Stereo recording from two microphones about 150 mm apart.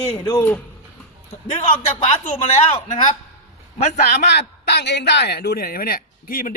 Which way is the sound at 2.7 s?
40° left (ahead or behind).